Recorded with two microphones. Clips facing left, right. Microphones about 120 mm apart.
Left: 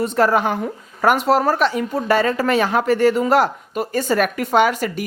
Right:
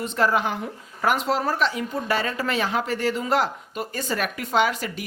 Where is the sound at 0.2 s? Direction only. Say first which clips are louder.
Left 5 dB; 55° left (ahead or behind).